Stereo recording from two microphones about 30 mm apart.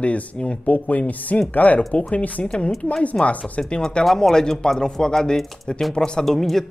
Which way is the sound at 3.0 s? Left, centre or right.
Left.